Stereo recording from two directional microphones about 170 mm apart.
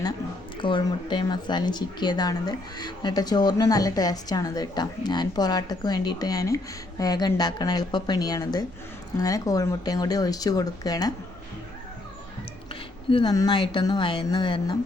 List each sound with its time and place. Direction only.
0.6 s speech: 25° left (ahead or behind)
13.1 s speech: 30° left (ahead or behind)